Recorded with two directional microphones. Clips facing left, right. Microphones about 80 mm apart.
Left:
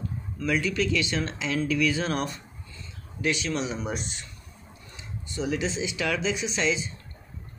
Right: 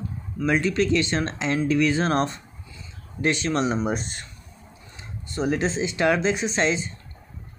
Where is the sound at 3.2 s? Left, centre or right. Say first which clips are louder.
Right 5 dB; right.